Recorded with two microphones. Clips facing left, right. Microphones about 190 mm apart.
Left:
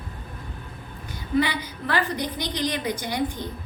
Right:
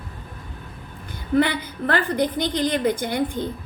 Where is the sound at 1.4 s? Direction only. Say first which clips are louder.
Right 4 dB; 55° right (ahead or behind).